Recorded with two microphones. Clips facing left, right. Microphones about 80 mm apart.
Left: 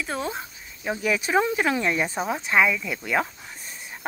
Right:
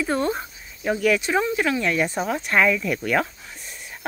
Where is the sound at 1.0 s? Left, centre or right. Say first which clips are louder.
Right 4 dB; centre.